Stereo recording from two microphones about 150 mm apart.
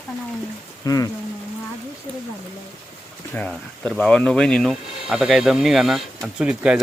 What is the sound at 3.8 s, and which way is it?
Speech, 5° left (ahead or behind).